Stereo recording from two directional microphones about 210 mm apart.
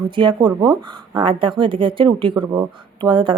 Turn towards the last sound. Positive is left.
turn(degrees=-25)  # may be behind; listen again after turning